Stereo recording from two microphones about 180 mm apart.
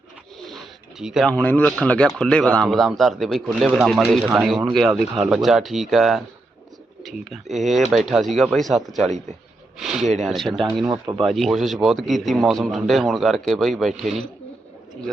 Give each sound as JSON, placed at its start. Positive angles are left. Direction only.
{"t": 0.3, "sound": "bird", "side_deg": 0}
{"t": 1.3, "sound": "a man's voice", "side_deg": 10}
{"t": 7.5, "sound": "a man's voice", "side_deg": 0}
{"t": 10.8, "sound": "speech", "side_deg": -20}
{"t": 11.2, "sound": "a man's voice", "side_deg": 0}